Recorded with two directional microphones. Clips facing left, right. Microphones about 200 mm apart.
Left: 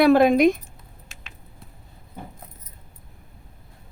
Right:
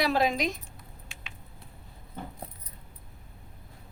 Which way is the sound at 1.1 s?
40° left (ahead or behind).